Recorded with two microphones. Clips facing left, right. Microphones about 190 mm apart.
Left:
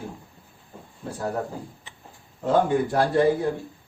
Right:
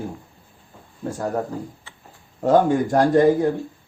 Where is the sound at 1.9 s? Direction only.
20° left (ahead or behind).